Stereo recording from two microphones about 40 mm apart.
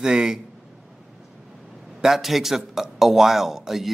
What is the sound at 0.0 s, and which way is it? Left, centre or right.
Speech, centre.